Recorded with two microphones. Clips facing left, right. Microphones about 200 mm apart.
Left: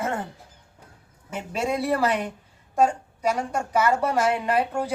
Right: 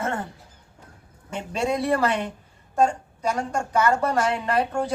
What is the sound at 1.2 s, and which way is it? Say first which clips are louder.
A woman's voice: right 1 dB; 5° left (ahead or behind).